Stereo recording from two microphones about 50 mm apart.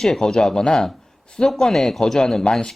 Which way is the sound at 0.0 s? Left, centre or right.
Centre.